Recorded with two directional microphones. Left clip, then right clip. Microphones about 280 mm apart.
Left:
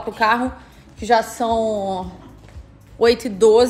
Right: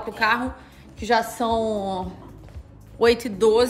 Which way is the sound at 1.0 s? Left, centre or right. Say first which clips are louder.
Left 4 dB; centre.